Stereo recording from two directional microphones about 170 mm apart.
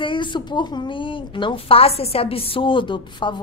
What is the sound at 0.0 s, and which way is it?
A woman's voice, 30° left (ahead or behind).